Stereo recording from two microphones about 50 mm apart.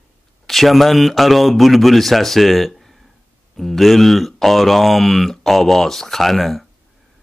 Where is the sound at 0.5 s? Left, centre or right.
Centre.